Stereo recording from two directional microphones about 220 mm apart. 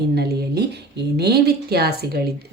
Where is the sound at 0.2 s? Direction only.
50° right (ahead or behind).